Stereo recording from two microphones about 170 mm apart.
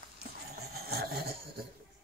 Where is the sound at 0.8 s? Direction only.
65° right (ahead or behind).